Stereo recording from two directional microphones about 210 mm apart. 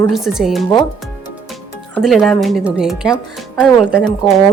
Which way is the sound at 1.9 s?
Centre (ahead or behind).